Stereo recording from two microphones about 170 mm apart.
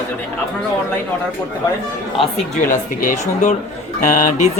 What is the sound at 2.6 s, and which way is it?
Speech, 50° left (ahead or behind).